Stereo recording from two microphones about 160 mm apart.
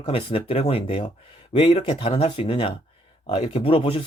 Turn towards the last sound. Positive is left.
turn(degrees=35)  # may be behind; listen again after turning